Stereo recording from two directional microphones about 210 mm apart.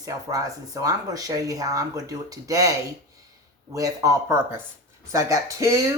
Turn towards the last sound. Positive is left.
turn(degrees=-15)  # may be behind; listen again after turning